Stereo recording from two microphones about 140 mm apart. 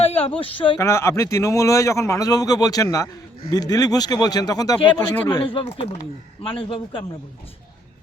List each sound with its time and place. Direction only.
0.2 s speech: 40° left (ahead or behind)
0.8 s speech: 20° left (ahead or behind)
4.9 s speech: 10° left (ahead or behind)
5.4 s speech: 40° left (ahead or behind)